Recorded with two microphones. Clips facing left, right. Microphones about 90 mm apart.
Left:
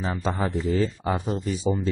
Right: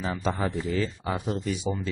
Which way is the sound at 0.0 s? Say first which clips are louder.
Left 1 dB; 30° left (ahead or behind).